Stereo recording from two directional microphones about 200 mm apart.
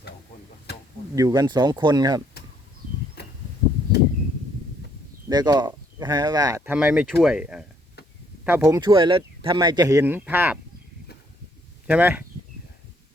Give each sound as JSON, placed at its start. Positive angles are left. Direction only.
{"t": 1.1, "sound": "speech", "side_deg": -15}
{"t": 3.2, "sound": "a sound", "side_deg": 55}
{"t": 5.3, "sound": "speech", "side_deg": -20}
{"t": 6.7, "sound": "speech", "side_deg": -5}
{"t": 11.9, "sound": "speech", "side_deg": -10}